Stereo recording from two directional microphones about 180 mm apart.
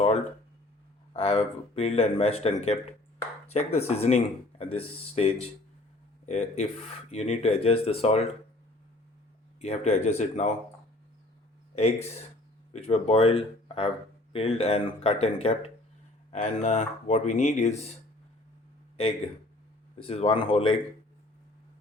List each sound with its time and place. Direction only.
1.1 s speech: 35° left (ahead or behind)
9.6 s speech: 35° left (ahead or behind)
11.7 s speech: 35° left (ahead or behind)
20.1 s speech: 30° left (ahead or behind)